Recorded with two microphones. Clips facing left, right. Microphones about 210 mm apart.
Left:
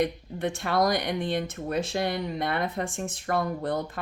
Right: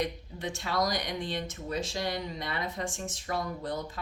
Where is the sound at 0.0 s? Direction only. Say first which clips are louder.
Left 6 dB; 55° left (ahead or behind).